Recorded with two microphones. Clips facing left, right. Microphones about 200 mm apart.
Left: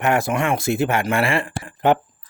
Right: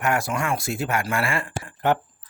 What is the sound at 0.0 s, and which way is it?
Speech, 20° left (ahead or behind).